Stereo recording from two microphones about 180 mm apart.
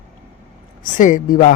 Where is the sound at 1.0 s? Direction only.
45° left (ahead or behind).